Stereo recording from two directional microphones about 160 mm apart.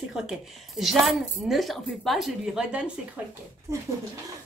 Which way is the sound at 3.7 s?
20° right (ahead or behind).